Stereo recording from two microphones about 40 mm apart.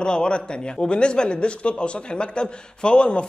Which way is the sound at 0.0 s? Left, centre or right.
Left.